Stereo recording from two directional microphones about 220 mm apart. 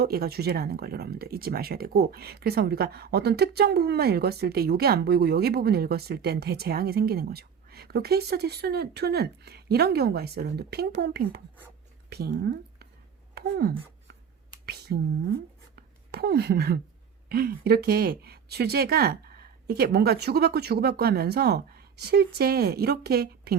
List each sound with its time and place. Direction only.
0.0 s speech: 45° right (ahead or behind)
14.9 s speech: 45° right (ahead or behind)
15.7 s a sound: 45° right (ahead or behind)
17.2 s speech: 45° right (ahead or behind)